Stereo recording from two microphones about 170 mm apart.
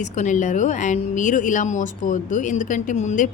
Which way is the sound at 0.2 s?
45° left (ahead or behind).